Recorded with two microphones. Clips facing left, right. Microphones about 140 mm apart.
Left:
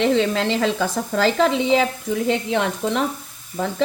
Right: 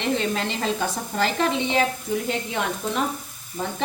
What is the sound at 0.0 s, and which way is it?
A woman's voice, 90° left.